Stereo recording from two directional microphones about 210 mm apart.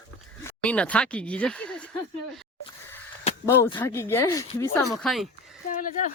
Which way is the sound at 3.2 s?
25° left (ahead or behind).